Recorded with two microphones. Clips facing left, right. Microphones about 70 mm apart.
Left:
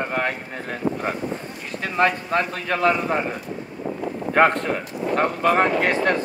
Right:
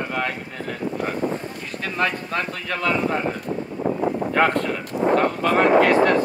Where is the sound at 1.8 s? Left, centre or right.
Left.